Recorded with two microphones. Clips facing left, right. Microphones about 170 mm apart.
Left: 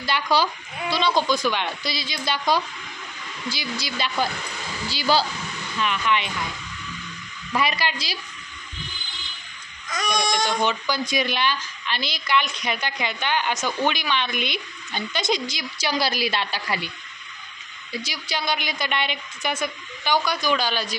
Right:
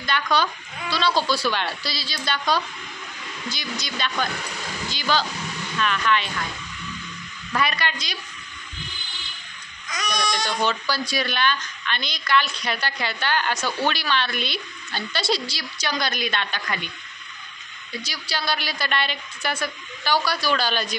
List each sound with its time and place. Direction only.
0.0 s a woman's voice: 30° left (ahead or behind)
4.9 s a woman's voice: 10° left (ahead or behind)
7.5 s speech: 25° left (ahead or behind)
9.8 s speech: 50° left (ahead or behind)
10.1 s a woman's voice: 25° left (ahead or behind)
18.0 s a woman's voice: 20° left (ahead or behind); by 21.0 s 5° left (ahead or behind)